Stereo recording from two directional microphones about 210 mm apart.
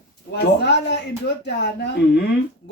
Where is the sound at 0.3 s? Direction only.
50° left (ahead or behind).